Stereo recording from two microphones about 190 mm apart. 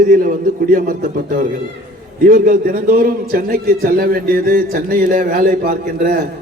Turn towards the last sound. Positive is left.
turn(degrees=-45)  # may be behind; listen again after turning